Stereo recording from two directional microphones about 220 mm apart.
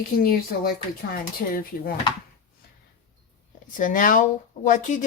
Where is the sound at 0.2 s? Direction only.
40° left (ahead or behind).